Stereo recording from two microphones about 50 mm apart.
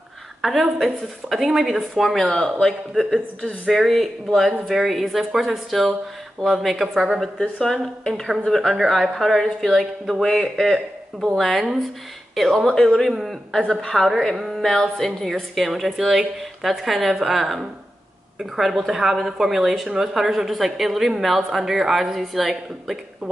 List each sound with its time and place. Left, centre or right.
0.4 s a woman's voice: centre
2.2 s a woman's voice: centre
3.3 s a woman's voice: centre
3.7 s a woman's voice: centre
7.5 s a woman's voice: centre
13.1 s a woman's voice: centre
13.7 s a woman's voice: centre
14.3 s music: centre
14.6 s a woman's voice: centre